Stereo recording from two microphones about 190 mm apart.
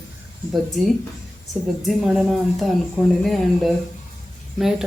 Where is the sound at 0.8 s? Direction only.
Centre (ahead or behind).